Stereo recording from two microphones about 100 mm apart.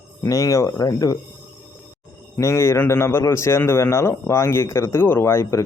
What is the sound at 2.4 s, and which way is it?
A man's voice, 30° left (ahead or behind).